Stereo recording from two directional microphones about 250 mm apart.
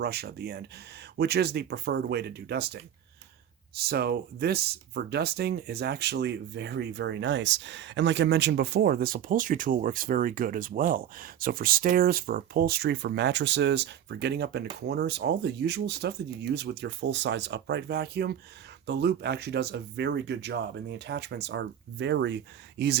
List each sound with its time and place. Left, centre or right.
0.0 s speech: right
3.8 s speech: right